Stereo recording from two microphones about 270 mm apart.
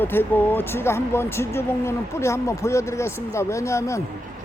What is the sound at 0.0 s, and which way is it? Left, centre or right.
Speech, centre.